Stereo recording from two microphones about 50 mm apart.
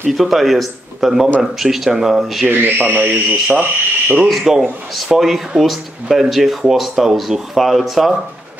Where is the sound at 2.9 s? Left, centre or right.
Right.